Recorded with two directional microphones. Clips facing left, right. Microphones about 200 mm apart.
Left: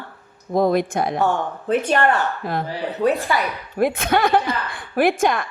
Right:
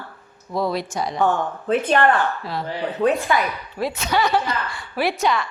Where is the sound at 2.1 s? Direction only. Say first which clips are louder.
Left 1 dB; 50° left (ahead or behind).